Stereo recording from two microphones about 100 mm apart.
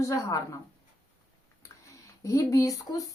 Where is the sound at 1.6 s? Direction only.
35° left (ahead or behind).